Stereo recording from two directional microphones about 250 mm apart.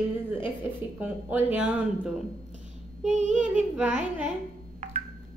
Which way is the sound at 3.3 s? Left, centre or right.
Centre.